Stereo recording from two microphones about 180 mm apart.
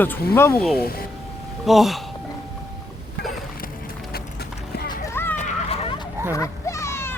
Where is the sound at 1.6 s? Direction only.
Centre (ahead or behind).